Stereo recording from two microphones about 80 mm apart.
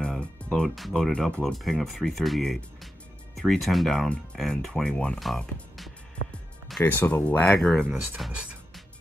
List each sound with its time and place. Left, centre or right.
0.2 s music: centre
0.7 s speech: centre
5.2 s speech: centre
6.8 s speech: left
8.2 s speech: centre